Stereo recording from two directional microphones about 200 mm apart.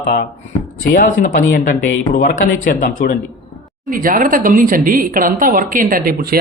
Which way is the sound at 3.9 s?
45° right (ahead or behind).